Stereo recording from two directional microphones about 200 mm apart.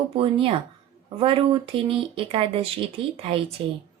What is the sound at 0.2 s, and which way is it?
Speech, 25° right (ahead or behind).